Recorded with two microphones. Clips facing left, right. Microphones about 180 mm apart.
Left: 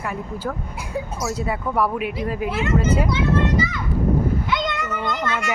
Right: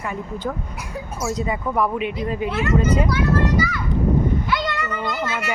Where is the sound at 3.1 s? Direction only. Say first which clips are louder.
Even; 20° left (ahead or behind).